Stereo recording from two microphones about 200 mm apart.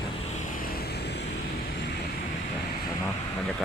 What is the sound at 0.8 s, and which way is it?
Vehicle, 55° left (ahead or behind).